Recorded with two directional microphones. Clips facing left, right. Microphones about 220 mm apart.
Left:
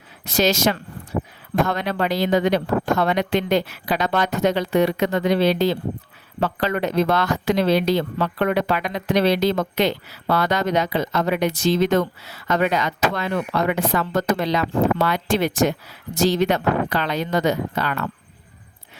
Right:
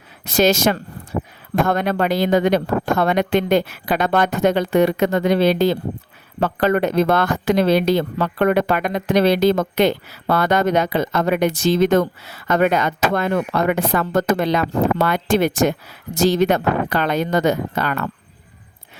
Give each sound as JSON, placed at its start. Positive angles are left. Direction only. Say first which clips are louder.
{"t": 0.3, "sound": "speech", "louder": "right 3 dB", "side_deg": -50}